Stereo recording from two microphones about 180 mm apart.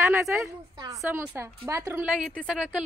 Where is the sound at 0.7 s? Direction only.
20° right (ahead or behind).